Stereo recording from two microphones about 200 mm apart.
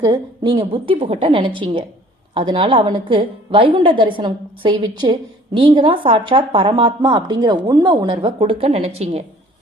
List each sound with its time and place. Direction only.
0.0 s speech: 20° right (ahead or behind)